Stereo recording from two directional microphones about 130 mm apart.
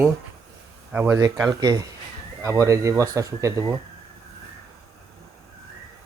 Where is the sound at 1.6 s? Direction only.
30° right (ahead or behind).